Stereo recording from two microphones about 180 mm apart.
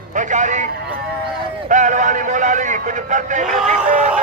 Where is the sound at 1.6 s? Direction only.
45° right (ahead or behind).